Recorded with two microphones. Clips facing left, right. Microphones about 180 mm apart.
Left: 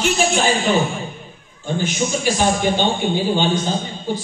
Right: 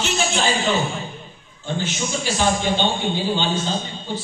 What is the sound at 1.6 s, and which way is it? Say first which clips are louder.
A man's voice: left 4 dB; 15° left (ahead or behind).